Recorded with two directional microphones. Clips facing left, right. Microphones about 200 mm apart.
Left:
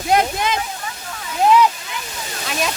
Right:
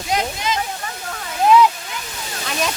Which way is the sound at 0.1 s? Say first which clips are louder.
Left 5 dB; 55° left (ahead or behind).